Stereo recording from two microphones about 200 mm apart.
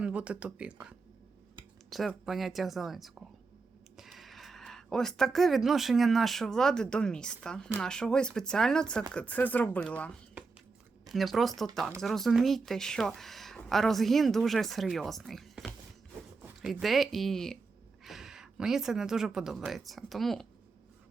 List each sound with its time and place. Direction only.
0.0 s speech: 5° right (ahead or behind)
11.1 s speech: centre (ahead or behind)